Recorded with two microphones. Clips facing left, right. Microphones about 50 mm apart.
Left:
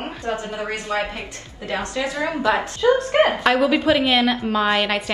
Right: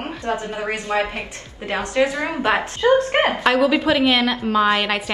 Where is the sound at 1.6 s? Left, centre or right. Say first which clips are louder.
Right 5 dB; right.